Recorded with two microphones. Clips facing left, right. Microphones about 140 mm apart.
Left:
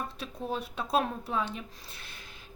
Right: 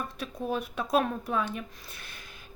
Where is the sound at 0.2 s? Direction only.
30° left (ahead or behind).